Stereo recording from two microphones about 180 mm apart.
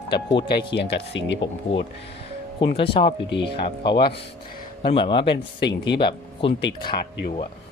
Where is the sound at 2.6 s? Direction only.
30° left (ahead or behind).